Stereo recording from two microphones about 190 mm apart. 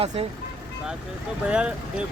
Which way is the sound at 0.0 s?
30° right (ahead or behind).